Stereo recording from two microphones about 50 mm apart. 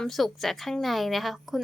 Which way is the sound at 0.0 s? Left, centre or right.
Centre.